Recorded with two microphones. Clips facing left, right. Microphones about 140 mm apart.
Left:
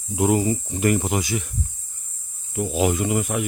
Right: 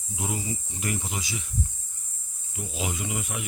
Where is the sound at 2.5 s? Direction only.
55° left (ahead or behind).